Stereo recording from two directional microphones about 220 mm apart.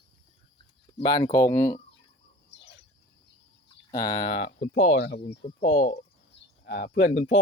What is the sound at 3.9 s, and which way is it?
Speech, 15° left (ahead or behind).